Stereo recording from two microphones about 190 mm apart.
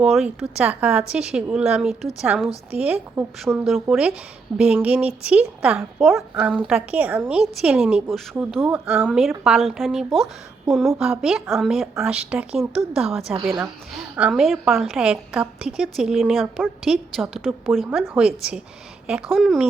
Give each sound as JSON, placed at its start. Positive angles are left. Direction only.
{"t": 0.0, "sound": "a woman's voice", "side_deg": 0}
{"t": 13.3, "sound": "a woman's voice", "side_deg": -25}
{"t": 13.6, "sound": "a woman's voice", "side_deg": -5}